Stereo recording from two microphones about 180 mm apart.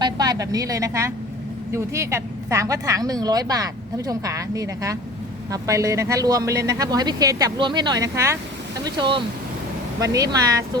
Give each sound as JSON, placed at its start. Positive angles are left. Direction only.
{"t": 0.0, "sound": "a woman's voice", "side_deg": -20}
{"t": 8.8, "sound": "speech", "side_deg": -25}